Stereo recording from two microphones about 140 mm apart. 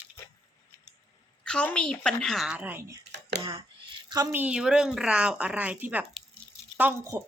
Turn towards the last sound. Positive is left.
turn(degrees=-15)  # may be behind; listen again after turning